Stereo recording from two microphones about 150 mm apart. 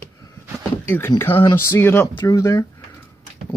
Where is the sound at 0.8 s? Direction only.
15° left (ahead or behind).